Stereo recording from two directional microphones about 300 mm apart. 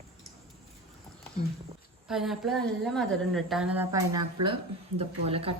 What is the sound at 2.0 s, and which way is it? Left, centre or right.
A woman's voice, centre.